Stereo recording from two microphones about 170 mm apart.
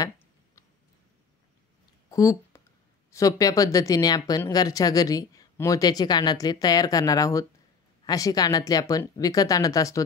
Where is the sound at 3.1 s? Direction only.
20° left (ahead or behind).